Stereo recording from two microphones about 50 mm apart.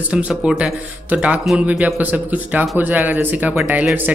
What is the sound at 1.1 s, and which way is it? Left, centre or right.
Speech, right.